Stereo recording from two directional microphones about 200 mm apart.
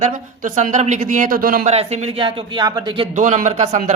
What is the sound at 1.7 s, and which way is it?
Speech, 30° right (ahead or behind).